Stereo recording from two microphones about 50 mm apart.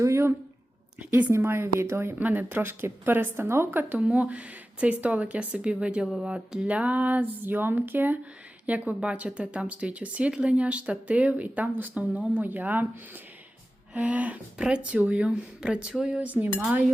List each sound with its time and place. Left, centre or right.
0.0 s speech: right
1.4 s speech: right
2.1 s a sound: right
2.5 s speech: right
3.7 s speech: right
3.9 s speech: right
6.2 s a sound: centre; by 8.2 s right
8.9 s speech: right
13.9 s speech: right
16.2 s a sound: right